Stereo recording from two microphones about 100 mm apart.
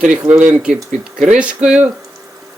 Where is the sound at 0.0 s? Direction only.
10° right (ahead or behind).